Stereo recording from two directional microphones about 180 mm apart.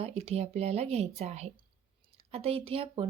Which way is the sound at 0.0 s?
35° right (ahead or behind).